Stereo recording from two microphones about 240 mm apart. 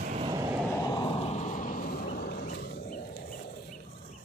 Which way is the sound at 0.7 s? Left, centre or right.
Centre.